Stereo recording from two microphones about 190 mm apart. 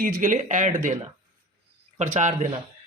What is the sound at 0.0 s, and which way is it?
Speech, 45° right (ahead or behind).